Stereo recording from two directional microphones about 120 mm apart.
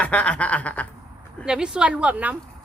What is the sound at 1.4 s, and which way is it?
Speech, 5° right (ahead or behind).